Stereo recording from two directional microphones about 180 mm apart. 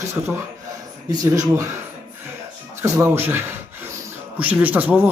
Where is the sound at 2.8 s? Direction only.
15° right (ahead or behind).